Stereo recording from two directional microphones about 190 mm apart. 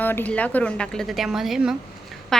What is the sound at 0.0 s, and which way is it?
A woman's voice, 10° left (ahead or behind).